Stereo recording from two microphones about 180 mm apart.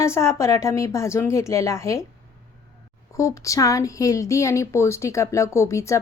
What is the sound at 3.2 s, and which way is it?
A woman's voice, 15° left (ahead or behind).